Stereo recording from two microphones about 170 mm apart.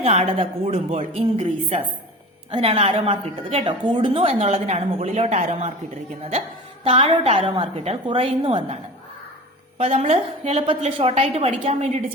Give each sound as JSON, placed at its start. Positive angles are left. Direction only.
{"t": 0.0, "sound": "a woman's voice", "side_deg": -40}
{"t": 6.8, "sound": "a woman's voice", "side_deg": -30}